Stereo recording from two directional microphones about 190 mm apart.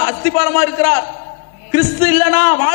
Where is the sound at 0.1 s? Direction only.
15° left (ahead or behind).